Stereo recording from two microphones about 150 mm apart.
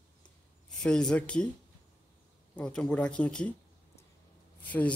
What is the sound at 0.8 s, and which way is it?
Speech, 5° left (ahead or behind).